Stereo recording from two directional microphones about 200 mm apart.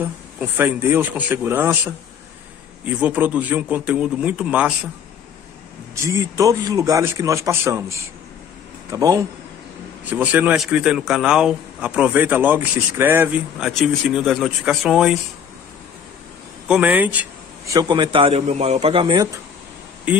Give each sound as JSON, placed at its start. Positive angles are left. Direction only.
{"t": 0.0, "sound": "a man's voice", "side_deg": -10}
{"t": 5.9, "sound": "a man's voice", "side_deg": -15}
{"t": 16.6, "sound": "a man's voice", "side_deg": -5}
{"t": 17.7, "sound": "a man's voice", "side_deg": -20}
{"t": 20.1, "sound": "a man's voice", "side_deg": -5}